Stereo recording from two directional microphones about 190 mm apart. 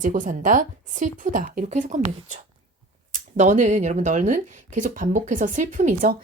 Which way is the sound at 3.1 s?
40° right (ahead or behind).